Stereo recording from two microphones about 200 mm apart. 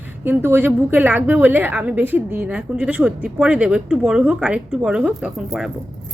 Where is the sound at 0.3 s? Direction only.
10° right (ahead or behind).